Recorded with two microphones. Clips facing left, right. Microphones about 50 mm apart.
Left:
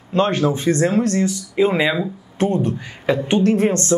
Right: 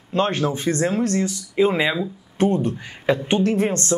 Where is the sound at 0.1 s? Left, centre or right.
Centre.